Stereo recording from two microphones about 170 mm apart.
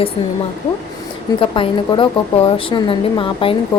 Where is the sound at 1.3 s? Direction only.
30° left (ahead or behind).